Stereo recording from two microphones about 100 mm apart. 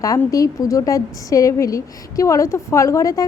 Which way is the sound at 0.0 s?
35° left (ahead or behind).